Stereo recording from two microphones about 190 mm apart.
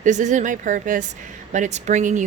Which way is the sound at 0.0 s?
40° right (ahead or behind).